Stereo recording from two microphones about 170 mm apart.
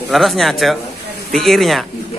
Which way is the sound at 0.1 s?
Centre (ahead or behind).